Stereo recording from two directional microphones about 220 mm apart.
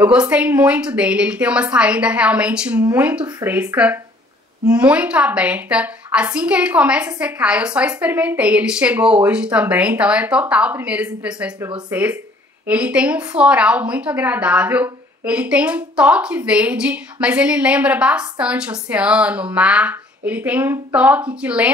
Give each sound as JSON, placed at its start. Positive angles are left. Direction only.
{"t": 0.0, "sound": "a woman's voice", "side_deg": -5}
{"t": 3.3, "sound": "speech", "side_deg": -20}
{"t": 3.5, "sound": "a woman's voice", "side_deg": -5}